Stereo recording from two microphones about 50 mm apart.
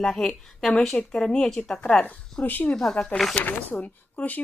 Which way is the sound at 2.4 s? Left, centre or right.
Left.